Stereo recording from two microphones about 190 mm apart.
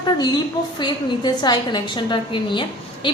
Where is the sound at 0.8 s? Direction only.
25° left (ahead or behind).